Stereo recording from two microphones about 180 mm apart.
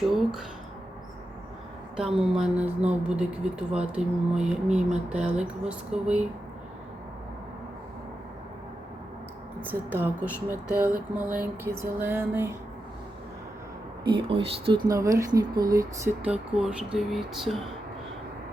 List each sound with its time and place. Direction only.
0.1 s speech: centre (ahead or behind)
2.0 s speech: 5° right (ahead or behind)
9.6 s music: 10° right (ahead or behind)
14.0 s speech: 30° right (ahead or behind)
14.8 s speech: 20° right (ahead or behind); by 17.6 s centre (ahead or behind)